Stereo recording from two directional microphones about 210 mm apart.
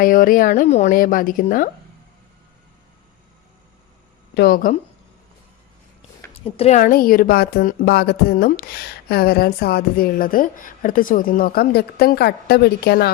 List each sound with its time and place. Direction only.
0.0 s speech: 40° left (ahead or behind)
4.4 s a woman's voice: 45° left (ahead or behind)
6.3 s a woman's voice: 30° left (ahead or behind); by 13.1 s 50° left (ahead or behind)